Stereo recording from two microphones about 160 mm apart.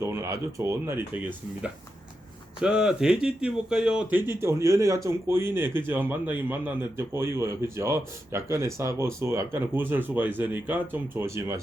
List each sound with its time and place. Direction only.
0.0 s speech: 20° right (ahead or behind)
4.3 s speech: 15° right (ahead or behind)